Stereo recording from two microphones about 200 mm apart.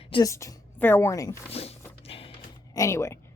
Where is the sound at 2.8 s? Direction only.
15° left (ahead or behind).